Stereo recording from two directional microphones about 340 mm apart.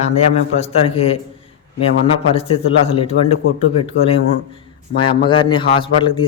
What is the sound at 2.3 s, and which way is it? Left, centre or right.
A man's voice, centre.